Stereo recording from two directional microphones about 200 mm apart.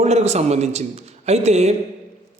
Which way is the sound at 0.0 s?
35° right (ahead or behind).